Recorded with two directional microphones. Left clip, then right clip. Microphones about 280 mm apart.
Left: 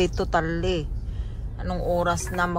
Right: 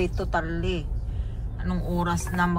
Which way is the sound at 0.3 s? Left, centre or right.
Left.